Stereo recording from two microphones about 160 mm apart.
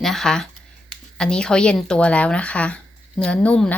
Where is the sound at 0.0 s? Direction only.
Centre (ahead or behind).